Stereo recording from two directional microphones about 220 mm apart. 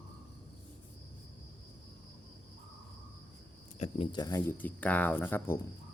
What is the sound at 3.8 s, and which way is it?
Speech, 25° left (ahead or behind).